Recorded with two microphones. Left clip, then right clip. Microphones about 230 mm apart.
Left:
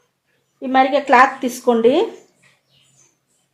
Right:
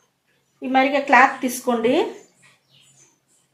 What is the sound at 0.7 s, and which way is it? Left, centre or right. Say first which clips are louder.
Speech: left 3 dB; left.